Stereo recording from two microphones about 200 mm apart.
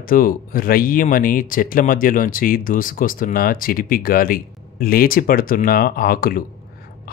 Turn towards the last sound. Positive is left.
turn(degrees=45)  # may be behind; listen again after turning